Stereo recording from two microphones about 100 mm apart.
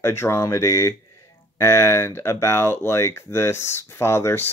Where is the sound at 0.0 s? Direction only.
25° left (ahead or behind).